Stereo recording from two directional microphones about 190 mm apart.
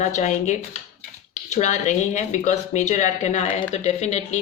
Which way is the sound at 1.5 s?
40° left (ahead or behind).